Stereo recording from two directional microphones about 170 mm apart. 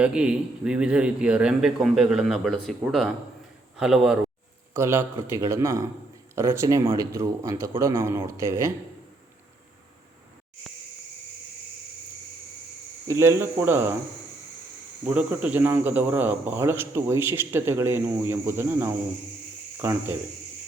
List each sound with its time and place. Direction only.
0.0 s a man's voice: 5° right (ahead or behind)
13.1 s speech: 15° right (ahead or behind)
15.0 s speech: 10° right (ahead or behind)